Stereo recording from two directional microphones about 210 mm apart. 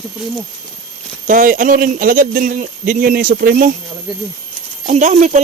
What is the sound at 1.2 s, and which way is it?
Speech, 40° right (ahead or behind).